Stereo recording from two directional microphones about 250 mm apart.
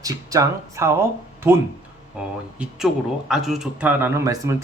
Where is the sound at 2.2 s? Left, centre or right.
Centre.